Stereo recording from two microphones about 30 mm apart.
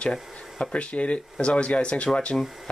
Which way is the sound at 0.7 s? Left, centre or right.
Left.